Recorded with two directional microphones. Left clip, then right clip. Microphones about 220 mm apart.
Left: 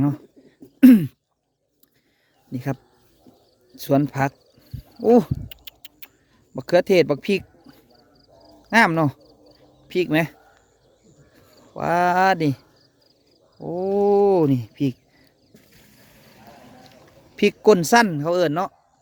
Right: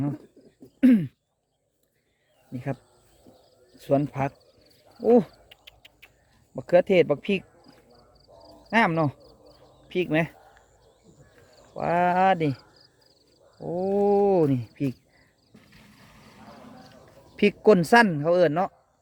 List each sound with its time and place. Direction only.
0.8 s throat clearing: 40° left (ahead or behind)
2.5 s speech: 35° left (ahead or behind)
3.8 s a sound: 35° left (ahead or behind)
6.6 s speech: 30° left (ahead or behind)
11.7 s speech: 30° left (ahead or behind)
13.6 s speech: 25° left (ahead or behind)
15.5 s livestock: 50° left (ahead or behind)
17.3 s speech: 25° left (ahead or behind)